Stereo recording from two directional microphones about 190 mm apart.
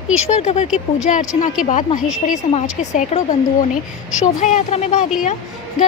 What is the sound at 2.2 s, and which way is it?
A woman's voice, 40° left (ahead or behind).